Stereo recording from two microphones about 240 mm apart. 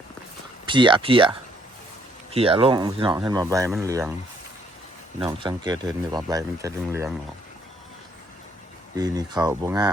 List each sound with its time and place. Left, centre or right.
0.6 s speech: centre
5.2 s speech: centre
9.0 s speech: centre